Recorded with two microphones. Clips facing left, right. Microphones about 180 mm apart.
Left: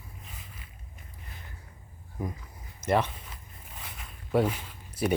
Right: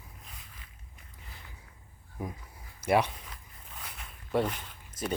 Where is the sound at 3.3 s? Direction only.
Centre (ahead or behind).